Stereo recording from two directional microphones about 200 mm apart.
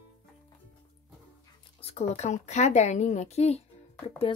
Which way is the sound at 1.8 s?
30° left (ahead or behind).